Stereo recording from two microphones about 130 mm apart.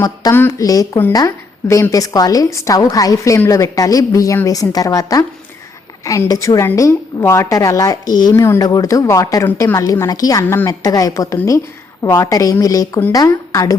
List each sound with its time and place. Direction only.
0.0 s a woman's voice: 25° left (ahead or behind)